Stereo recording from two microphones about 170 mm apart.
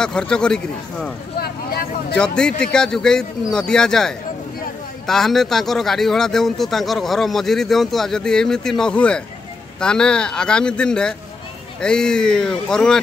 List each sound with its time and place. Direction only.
0.0 s speech: 5° left (ahead or behind)
1.4 s speech: 65° left (ahead or behind)
2.1 s speech: 5° left (ahead or behind)